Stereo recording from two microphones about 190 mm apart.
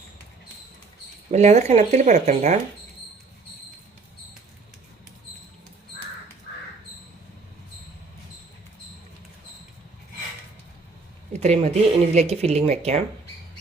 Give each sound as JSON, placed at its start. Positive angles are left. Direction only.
{"t": 1.3, "sound": "speech", "side_deg": -35}
{"t": 11.3, "sound": "speech", "side_deg": -35}